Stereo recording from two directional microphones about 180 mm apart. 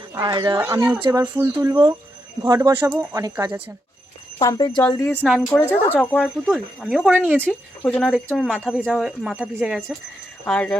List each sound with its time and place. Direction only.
0.1 s speech: 20° right (ahead or behind)
4.4 s a woman's voice: 25° left (ahead or behind); by 7.5 s 10° right (ahead or behind)
7.9 s speech: centre (ahead or behind)
10.4 s a woman's voice: 10° left (ahead or behind)